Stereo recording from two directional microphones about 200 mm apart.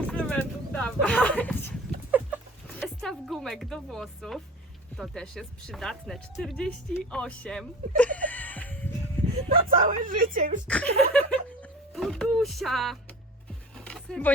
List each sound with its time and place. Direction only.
0.1 s a sound: 5° left (ahead or behind)
2.0 s chicken: 10° right (ahead or behind)
2.6 s music: 5° left (ahead or behind)
4.9 s speech: centre (ahead or behind)
9.5 s speech: 45° right (ahead or behind)
10.7 s speech: 5° left (ahead or behind)
13.7 s music: 5° left (ahead or behind)